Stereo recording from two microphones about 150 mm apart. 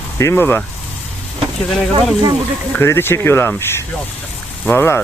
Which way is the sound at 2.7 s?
15° left (ahead or behind).